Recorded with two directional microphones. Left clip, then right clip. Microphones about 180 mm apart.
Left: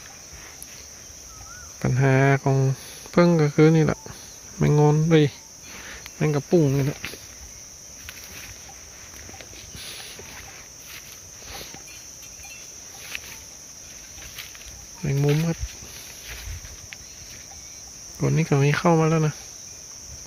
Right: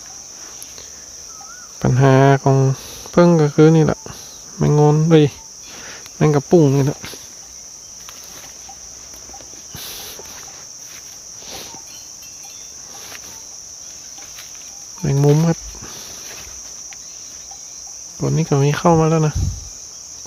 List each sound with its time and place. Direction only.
1.8 s cricket: 15° right (ahead or behind)
6.1 s cricket: 30° right (ahead or behind)
15.0 s cricket: 25° right (ahead or behind)
18.2 s cricket: 5° right (ahead or behind)